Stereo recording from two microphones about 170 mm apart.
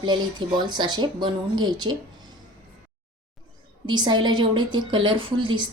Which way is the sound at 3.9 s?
25° right (ahead or behind).